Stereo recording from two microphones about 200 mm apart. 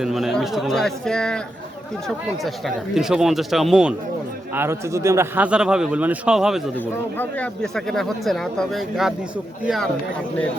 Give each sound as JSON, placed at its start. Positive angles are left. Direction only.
{"t": 0.0, "sound": "a man's voice", "side_deg": 0}
{"t": 6.7, "sound": "speech", "side_deg": 10}